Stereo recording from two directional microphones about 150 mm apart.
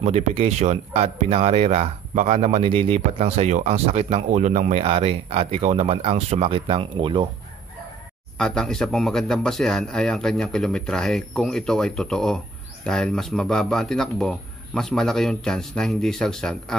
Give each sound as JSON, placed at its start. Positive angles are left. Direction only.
{"t": 0.0, "sound": "speech", "side_deg": -45}
{"t": 8.4, "sound": "a man's voice", "side_deg": 5}